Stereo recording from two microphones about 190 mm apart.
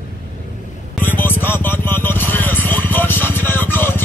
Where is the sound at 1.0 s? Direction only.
10° left (ahead or behind).